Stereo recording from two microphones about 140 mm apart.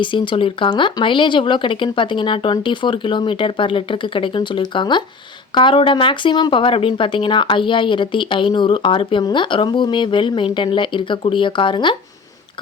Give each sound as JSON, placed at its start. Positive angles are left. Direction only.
{"t": 0.0, "sound": "speech", "side_deg": 35}